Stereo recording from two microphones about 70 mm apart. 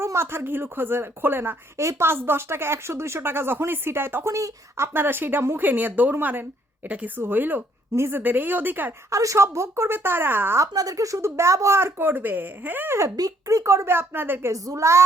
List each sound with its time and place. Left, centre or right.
0.0 s speech: right
1.8 s speech: right
4.9 s speech: right
7.9 s speech: right
8.2 s speech: right
9.0 s speech: right
10.6 s speech: right
13.1 s speech: right
14.5 s a woman's voice: right